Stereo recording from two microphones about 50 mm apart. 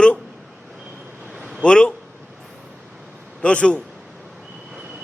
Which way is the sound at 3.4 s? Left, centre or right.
Left.